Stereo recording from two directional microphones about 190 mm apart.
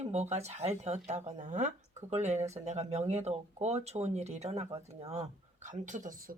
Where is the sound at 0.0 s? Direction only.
35° right (ahead or behind).